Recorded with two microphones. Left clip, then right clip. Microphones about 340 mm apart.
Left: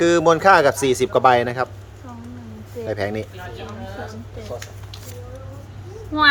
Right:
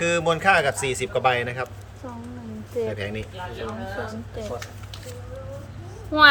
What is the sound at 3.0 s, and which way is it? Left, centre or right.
Speech, centre.